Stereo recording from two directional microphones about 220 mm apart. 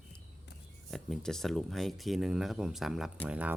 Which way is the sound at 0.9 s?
Centre (ahead or behind).